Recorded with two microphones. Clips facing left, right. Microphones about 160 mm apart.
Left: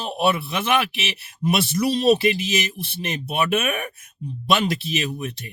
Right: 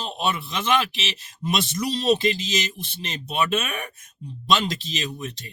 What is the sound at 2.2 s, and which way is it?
Speech, 60° left (ahead or behind).